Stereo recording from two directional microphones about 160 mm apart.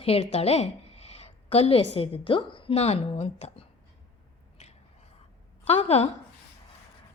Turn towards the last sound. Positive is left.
turn(degrees=40)  # may be behind; listen again after turning